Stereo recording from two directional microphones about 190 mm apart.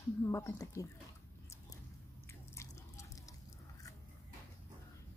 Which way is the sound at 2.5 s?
15° left (ahead or behind).